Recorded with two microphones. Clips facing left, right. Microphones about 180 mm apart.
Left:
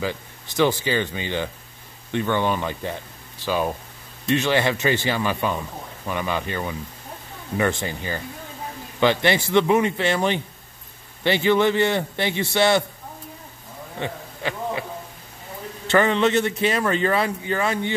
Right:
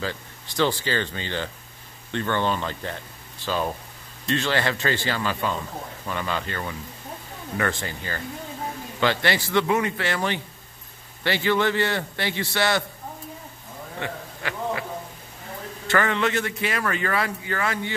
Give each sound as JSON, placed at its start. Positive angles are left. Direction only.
{"t": 0.0, "sound": "speech", "side_deg": 15}
{"t": 13.9, "sound": "speech", "side_deg": 20}
{"t": 15.9, "sound": "speech", "side_deg": 20}